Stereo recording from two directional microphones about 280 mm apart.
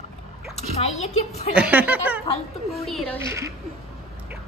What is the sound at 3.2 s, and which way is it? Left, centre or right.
Speech, centre.